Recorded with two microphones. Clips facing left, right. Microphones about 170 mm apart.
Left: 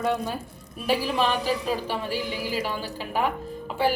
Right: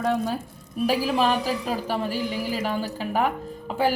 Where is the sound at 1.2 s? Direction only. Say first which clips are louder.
Right 1 dB; 45° right (ahead or behind).